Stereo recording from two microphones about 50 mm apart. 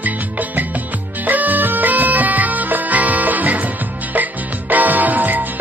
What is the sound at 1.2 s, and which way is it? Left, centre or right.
Bagpipes, right.